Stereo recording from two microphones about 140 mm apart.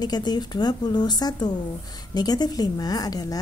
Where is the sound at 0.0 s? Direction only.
30° left (ahead or behind).